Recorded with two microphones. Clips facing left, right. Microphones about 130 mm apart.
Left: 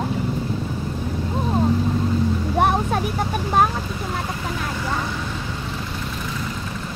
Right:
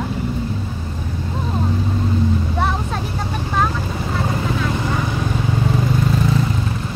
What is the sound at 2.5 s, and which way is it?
Vehicle, 55° left (ahead or behind).